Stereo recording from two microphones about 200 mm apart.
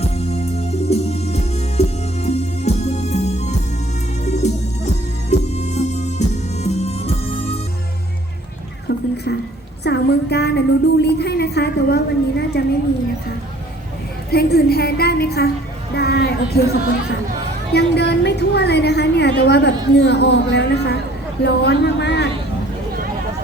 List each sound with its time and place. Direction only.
0.0 s music: 30° left (ahead or behind)
8.9 s a sound: 55° left (ahead or behind)
14.3 s a woman's voice: 50° left (ahead or behind)
16.0 s music: 55° left (ahead or behind)
17.7 s a woman's voice: 55° left (ahead or behind)